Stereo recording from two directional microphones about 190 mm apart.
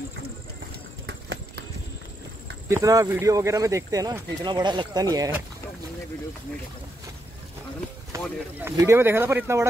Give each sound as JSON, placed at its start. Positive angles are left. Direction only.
{"t": 1.0, "sound": "a sound", "side_deg": -65}
{"t": 2.7, "sound": "speech", "side_deg": -15}
{"t": 8.5, "sound": "speech", "side_deg": -10}